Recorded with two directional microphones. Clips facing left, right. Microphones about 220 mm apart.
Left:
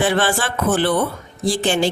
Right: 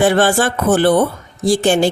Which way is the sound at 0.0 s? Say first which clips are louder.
Right 6 dB; 45° right (ahead or behind).